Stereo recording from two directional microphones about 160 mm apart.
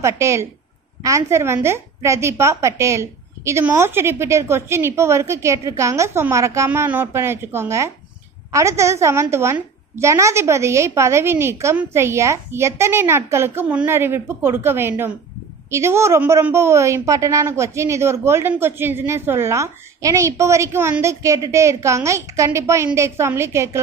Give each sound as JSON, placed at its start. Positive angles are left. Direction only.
{"t": 0.0, "sound": "a woman's voice", "side_deg": -15}